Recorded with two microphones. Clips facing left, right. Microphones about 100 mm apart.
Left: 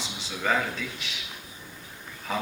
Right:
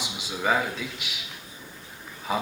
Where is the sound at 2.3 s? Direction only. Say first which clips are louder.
Right 3 dB; 10° right (ahead or behind).